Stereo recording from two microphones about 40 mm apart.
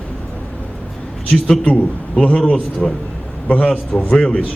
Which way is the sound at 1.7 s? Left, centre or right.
Left.